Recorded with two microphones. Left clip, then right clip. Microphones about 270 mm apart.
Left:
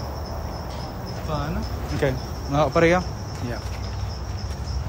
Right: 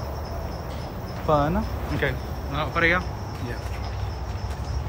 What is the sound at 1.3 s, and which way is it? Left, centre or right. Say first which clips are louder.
Speech: right 9 dB; centre.